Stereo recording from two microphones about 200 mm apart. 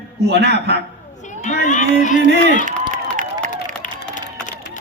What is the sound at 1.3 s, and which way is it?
Speech, 40° left (ahead or behind).